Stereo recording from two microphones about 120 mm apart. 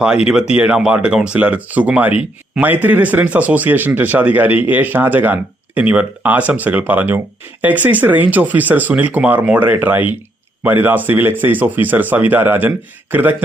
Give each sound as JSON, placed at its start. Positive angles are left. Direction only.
{"t": 0.3, "sound": "speech", "side_deg": -10}